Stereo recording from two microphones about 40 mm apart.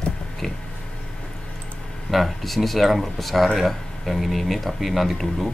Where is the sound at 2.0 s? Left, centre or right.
Centre.